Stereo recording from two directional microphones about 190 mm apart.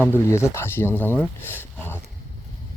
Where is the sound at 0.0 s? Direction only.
15° left (ahead or behind).